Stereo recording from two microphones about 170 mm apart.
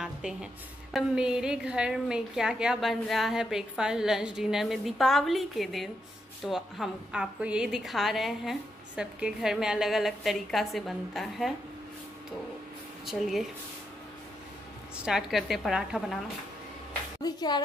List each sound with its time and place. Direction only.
0.0 s music: 5° right (ahead or behind)
0.9 s a woman's voice: 5° right (ahead or behind)
13.0 s a woman's voice: centre (ahead or behind)
15.0 s a woman's voice: 5° right (ahead or behind)
17.2 s speech: 25° left (ahead or behind)